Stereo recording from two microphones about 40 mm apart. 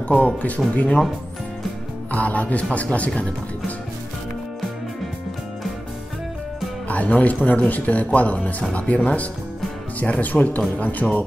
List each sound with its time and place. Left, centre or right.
0.1 s speech: left
2.1 s speech: left
6.9 s speech: left